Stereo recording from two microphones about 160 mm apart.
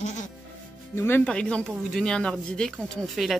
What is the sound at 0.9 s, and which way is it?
Speech, 15° left (ahead or behind).